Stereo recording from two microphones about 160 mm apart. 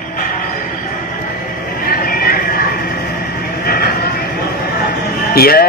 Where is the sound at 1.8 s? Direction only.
70° left (ahead or behind).